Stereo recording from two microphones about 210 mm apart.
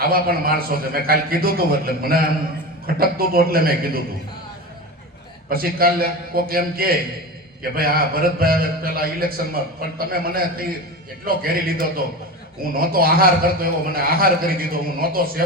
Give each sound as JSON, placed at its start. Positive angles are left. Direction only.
{"t": 0.0, "sound": "a man's voice", "side_deg": -45}
{"t": 5.5, "sound": "a man's voice", "side_deg": -45}